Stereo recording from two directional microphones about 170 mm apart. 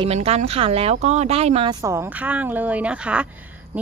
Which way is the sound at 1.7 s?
15° right (ahead or behind).